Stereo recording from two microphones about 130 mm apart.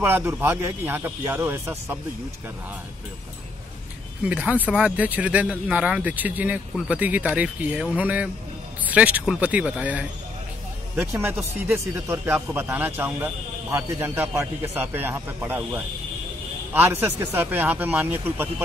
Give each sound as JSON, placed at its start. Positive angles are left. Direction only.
{"t": 0.0, "sound": "a man's voice", "side_deg": -20}
{"t": 4.3, "sound": "a man's voice", "side_deg": -10}
{"t": 11.5, "sound": "a man's voice", "side_deg": -15}